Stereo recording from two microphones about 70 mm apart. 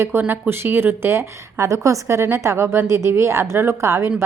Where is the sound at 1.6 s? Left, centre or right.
Right.